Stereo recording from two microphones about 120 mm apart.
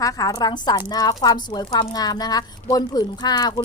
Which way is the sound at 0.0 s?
30° left (ahead or behind).